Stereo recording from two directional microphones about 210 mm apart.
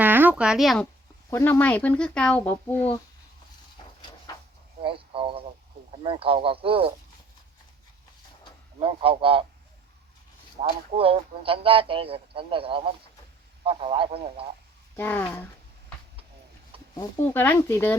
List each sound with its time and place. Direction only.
0.0 s a sound: 10° right (ahead or behind)
1.3 s speech: 10° left (ahead or behind)
3.8 s a sound: 20° left (ahead or behind)
4.8 s a sound: 25° right (ahead or behind)
6.0 s a man's voice: 25° right (ahead or behind)
8.8 s a man's voice: 25° right (ahead or behind)
10.6 s a man's voice: 25° right (ahead or behind)
14.9 s speech: 10° left (ahead or behind)
16.9 s speech: 15° left (ahead or behind)